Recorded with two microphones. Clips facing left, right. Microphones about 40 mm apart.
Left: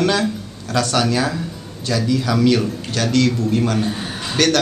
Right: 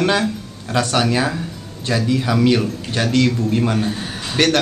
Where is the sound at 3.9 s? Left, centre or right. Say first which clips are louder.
Left 1 dB; centre.